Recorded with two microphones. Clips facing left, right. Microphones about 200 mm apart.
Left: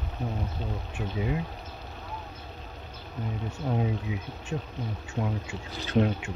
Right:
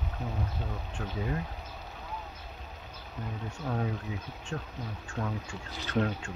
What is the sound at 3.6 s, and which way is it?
Speech, 15° left (ahead or behind).